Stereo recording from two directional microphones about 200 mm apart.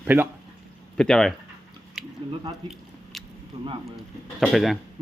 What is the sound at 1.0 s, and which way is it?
Speech, 5° left (ahead or behind).